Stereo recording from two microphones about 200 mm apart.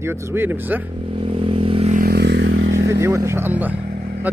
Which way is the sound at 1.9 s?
50° right (ahead or behind).